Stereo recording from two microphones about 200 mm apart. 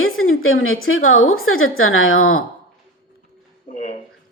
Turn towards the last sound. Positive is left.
turn(degrees=35)  # may be behind; listen again after turning